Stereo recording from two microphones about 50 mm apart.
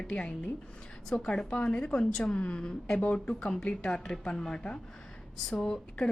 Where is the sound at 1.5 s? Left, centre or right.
Left.